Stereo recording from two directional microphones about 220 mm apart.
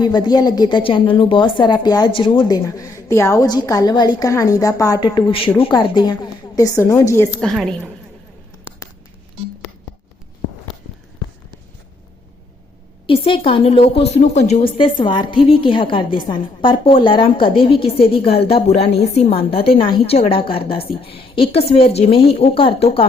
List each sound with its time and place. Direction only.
0.0 s a woman's voice: 20° left (ahead or behind)
7.3 s a woman's voice: centre (ahead or behind)
13.1 s a woman's voice: 25° left (ahead or behind)